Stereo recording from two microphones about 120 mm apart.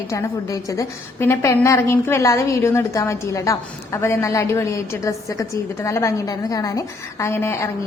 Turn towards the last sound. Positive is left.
turn(degrees=20)  # may be behind; listen again after turning